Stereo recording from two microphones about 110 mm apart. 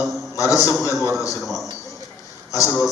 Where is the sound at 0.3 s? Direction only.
30° left (ahead or behind).